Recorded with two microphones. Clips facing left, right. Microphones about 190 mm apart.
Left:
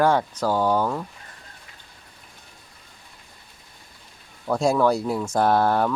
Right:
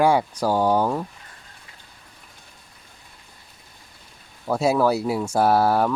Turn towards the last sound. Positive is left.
turn(degrees=-5)  # may be behind; listen again after turning